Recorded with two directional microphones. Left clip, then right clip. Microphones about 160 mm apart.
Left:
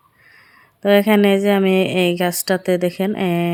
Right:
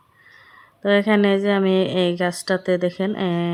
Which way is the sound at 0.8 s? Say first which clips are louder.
Left 4 dB; 15° left (ahead or behind).